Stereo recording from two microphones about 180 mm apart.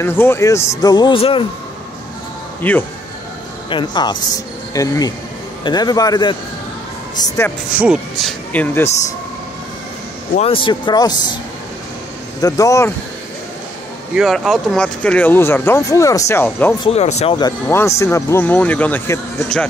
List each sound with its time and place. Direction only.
0.0 s speech: 10° left (ahead or behind); by 1.4 s 30° left (ahead or behind)
2.6 s speech: 10° left (ahead or behind)
3.7 s speech: 25° left (ahead or behind)
7.7 s speech: 5° right (ahead or behind); by 8.9 s 10° left (ahead or behind)
10.3 s speech: 30° left (ahead or behind)
12.4 s speech: 20° left (ahead or behind)
14.1 s speech: centre (ahead or behind)
16.8 s speech: 35° left (ahead or behind)
17.4 s speech: 15° left (ahead or behind)